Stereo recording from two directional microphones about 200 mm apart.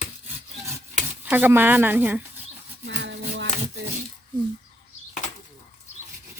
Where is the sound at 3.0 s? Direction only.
60° right (ahead or behind).